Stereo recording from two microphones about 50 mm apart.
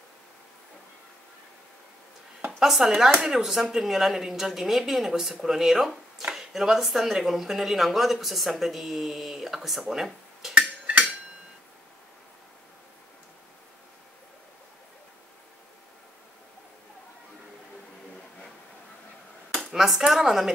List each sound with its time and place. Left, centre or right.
2.6 s speech: centre
10.9 s hammer: right
19.6 s cutlery: centre